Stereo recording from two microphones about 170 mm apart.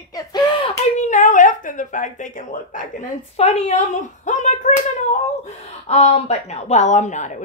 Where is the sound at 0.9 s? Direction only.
45° left (ahead or behind).